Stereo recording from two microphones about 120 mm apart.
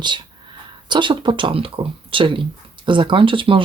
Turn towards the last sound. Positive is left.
turn(degrees=-45)  # may be behind; listen again after turning